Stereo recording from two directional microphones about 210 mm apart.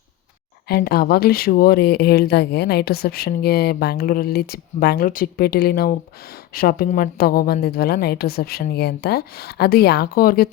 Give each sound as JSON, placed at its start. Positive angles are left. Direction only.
{"t": 0.7, "sound": "speech", "side_deg": 45}